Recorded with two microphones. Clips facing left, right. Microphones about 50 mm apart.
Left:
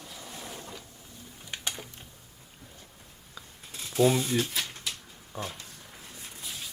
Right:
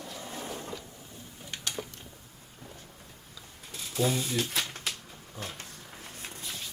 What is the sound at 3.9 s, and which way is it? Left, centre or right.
Speech, left.